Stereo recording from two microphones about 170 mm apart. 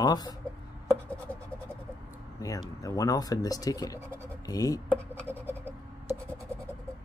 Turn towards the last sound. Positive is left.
turn(degrees=-10)  # may be behind; listen again after turning